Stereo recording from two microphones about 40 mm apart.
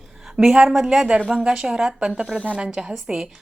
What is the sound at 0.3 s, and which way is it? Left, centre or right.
A woman's voice, centre.